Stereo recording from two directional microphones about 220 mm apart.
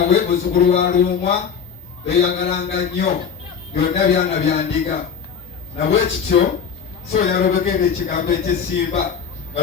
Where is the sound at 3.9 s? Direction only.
30° left (ahead or behind).